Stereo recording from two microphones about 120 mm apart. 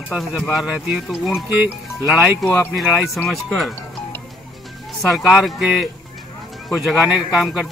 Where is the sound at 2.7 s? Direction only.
Centre (ahead or behind).